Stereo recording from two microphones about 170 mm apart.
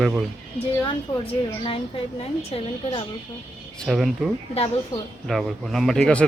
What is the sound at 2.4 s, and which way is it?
Speech, 35° left (ahead or behind).